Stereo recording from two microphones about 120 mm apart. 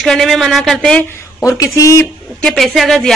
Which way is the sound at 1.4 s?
30° left (ahead or behind).